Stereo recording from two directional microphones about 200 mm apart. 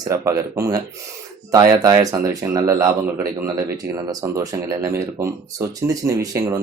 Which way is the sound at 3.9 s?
15° right (ahead or behind).